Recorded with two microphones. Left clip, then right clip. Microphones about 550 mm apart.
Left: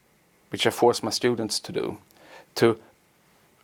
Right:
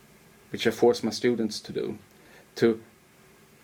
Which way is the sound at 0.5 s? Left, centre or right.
Left.